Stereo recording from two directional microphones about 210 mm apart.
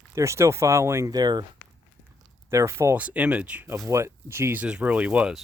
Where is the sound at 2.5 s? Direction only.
15° right (ahead or behind).